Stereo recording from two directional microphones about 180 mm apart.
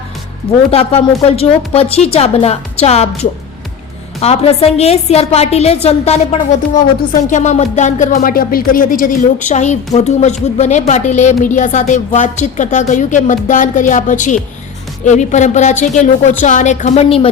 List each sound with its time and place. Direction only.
0.7 s a woman's voice: 35° left (ahead or behind)